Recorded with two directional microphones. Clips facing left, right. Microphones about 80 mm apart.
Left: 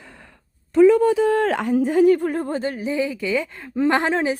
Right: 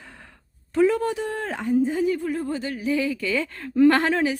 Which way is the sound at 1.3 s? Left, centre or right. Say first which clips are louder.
Left 7 dB; left.